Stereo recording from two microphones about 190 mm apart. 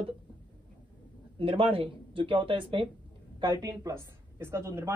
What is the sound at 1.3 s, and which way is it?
A woman's voice, 30° right (ahead or behind).